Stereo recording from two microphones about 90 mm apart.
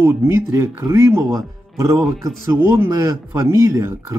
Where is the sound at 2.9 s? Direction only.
35° right (ahead or behind).